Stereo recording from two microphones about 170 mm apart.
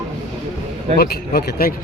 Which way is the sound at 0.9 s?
70° left (ahead or behind).